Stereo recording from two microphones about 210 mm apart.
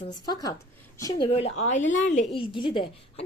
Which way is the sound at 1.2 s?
30° left (ahead or behind).